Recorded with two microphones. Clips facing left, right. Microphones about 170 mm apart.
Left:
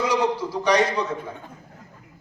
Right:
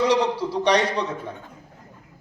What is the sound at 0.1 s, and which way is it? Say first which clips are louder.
Speech: right 2 dB; 30° right (ahead or behind).